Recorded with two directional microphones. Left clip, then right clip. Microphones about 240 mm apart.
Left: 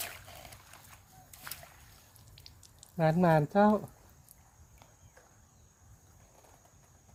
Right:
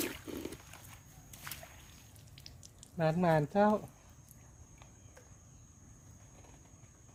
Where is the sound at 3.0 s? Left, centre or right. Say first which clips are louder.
Left 4 dB; left.